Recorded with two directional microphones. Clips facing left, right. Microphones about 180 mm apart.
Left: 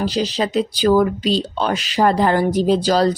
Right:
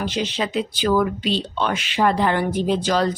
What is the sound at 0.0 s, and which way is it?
A woman's voice, 35° left (ahead or behind).